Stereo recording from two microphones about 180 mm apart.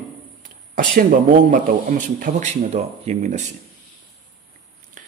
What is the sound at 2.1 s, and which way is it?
Speech, 50° right (ahead or behind).